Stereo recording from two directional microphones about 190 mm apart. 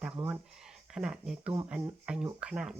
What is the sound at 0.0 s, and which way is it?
Speech, 5° right (ahead or behind).